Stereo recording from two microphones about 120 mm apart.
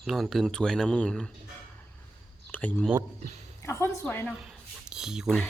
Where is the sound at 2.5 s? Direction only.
15° left (ahead or behind).